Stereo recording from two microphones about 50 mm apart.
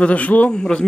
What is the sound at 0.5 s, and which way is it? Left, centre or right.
Speech, centre.